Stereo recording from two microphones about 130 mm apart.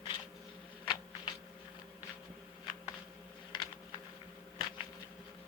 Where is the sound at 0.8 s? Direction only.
35° left (ahead or behind).